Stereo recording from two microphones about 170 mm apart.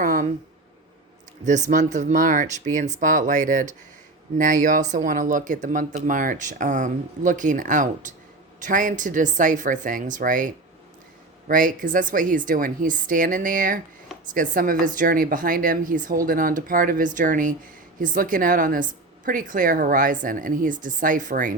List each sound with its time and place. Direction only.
0.0 s a sound: 50° right (ahead or behind)
1.5 s a woman's voice: 45° right (ahead or behind)
4.9 s a woman's voice: 50° right (ahead or behind)